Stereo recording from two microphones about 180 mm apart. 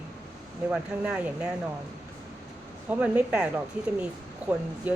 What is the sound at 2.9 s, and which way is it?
Speech, 10° right (ahead or behind).